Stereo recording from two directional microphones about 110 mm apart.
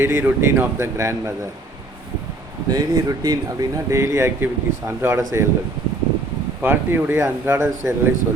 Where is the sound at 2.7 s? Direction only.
35° right (ahead or behind).